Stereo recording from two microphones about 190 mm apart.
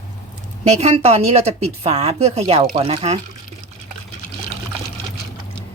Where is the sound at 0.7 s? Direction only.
35° right (ahead or behind).